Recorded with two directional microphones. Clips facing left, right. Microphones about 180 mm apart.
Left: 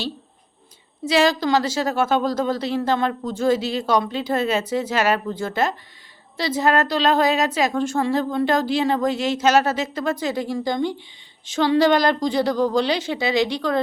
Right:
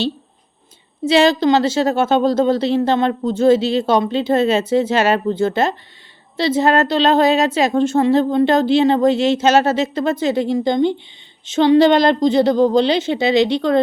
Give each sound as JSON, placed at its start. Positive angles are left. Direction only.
{"t": 1.0, "sound": "a woman's voice", "side_deg": -25}